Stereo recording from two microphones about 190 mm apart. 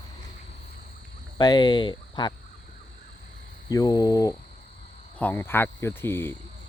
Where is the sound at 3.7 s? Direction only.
20° left (ahead or behind).